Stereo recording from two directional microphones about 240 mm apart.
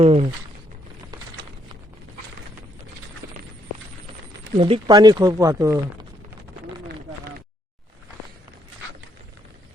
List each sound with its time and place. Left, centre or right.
0.0 s speech: right
4.5 s speech: right